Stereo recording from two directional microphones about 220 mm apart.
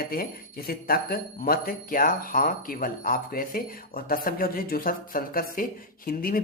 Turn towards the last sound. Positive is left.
turn(degrees=40)  # may be behind; listen again after turning